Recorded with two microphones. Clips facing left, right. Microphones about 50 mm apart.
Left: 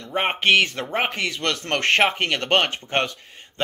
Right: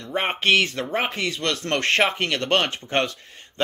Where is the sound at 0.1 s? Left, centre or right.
Left.